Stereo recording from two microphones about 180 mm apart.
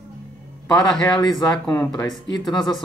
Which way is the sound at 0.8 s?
5° left (ahead or behind).